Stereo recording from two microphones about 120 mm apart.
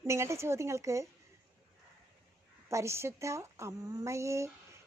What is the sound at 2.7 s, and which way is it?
Speech, 25° right (ahead or behind).